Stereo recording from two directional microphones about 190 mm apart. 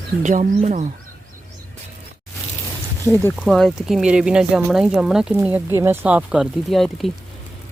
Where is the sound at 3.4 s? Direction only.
Centre (ahead or behind).